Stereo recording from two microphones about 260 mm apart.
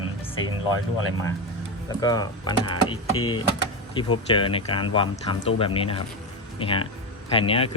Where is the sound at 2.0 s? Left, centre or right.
Centre.